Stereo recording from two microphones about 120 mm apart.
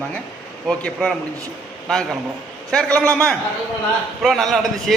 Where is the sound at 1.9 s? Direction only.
5° left (ahead or behind).